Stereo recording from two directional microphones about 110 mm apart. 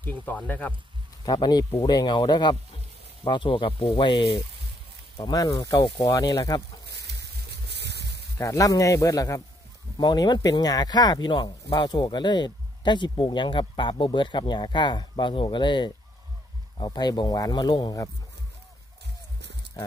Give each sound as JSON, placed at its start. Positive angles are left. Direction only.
{"t": 0.0, "sound": "speech", "side_deg": 15}
{"t": 1.2, "sound": "speech", "side_deg": 40}
{"t": 8.4, "sound": "speech", "side_deg": 30}